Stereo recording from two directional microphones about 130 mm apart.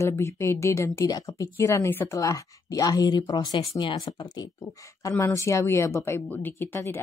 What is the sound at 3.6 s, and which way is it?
Speech, 45° left (ahead or behind).